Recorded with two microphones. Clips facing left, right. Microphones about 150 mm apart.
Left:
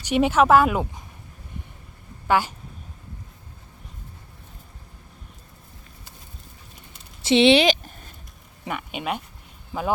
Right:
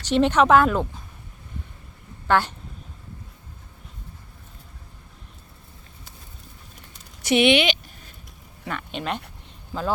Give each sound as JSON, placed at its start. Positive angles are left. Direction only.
{"t": 0.0, "sound": "speech", "side_deg": 10}
{"t": 2.2, "sound": "speech", "side_deg": 10}
{"t": 7.2, "sound": "a sound", "side_deg": 25}
{"t": 8.6, "sound": "speech", "side_deg": 10}